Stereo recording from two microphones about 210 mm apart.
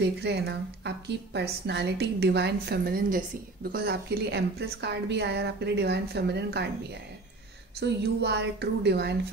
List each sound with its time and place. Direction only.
0.0 s a woman's voice: 50° right (ahead or behind)
7.8 s a woman's voice: 55° right (ahead or behind)